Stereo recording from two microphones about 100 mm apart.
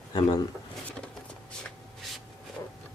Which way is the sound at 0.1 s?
40° left (ahead or behind).